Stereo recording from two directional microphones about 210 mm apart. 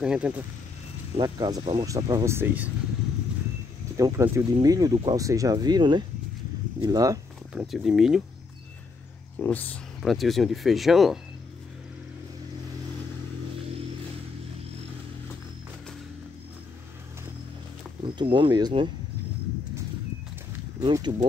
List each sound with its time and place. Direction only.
0.0 s speech: 5° right (ahead or behind)
1.1 s speech: 20° right (ahead or behind)
3.9 s speech: 15° right (ahead or behind)
7.5 s speech: centre (ahead or behind)
9.4 s speech: 10° left (ahead or behind)
18.0 s speech: 20° right (ahead or behind)
20.8 s speech: 20° right (ahead or behind)